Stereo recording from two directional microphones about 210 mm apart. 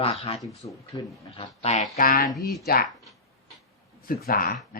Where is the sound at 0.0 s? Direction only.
25° left (ahead or behind); by 2.3 s 40° left (ahead or behind).